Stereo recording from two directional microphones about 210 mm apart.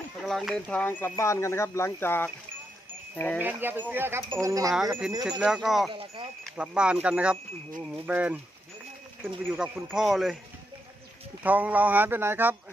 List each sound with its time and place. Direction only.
0.2 s speech: centre (ahead or behind)
3.4 s speech: 10° right (ahead or behind)
5.4 s speech: centre (ahead or behind)
5.9 s speech: 25° right (ahead or behind)
6.4 s speech: 5° right (ahead or behind)
11.4 s speech: 5° right (ahead or behind)